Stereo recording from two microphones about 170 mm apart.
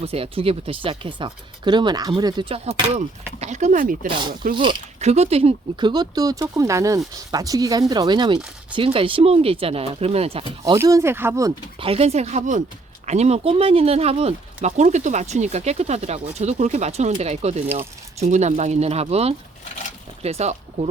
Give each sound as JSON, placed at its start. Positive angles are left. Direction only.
{"t": 0.0, "sound": "speech", "side_deg": -35}
{"t": 3.4, "sound": "speech", "side_deg": -45}
{"t": 4.5, "sound": "speech", "side_deg": -30}
{"t": 10.8, "sound": "speech", "side_deg": -15}
{"t": 11.8, "sound": "speech", "side_deg": -35}